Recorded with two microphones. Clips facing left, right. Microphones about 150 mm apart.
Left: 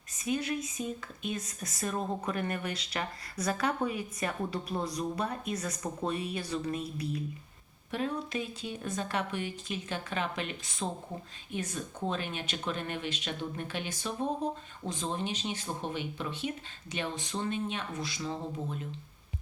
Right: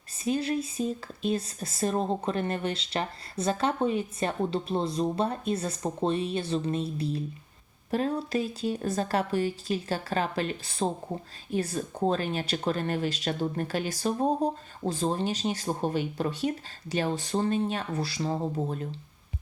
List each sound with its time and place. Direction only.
0.3 s speech: 30° right (ahead or behind)